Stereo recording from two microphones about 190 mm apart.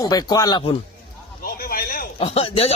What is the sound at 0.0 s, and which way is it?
Speech, 20° left (ahead or behind).